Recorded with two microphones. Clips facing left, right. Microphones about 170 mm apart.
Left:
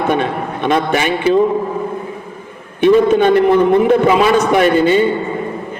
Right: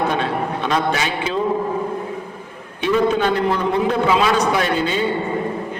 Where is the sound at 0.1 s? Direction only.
55° left (ahead or behind).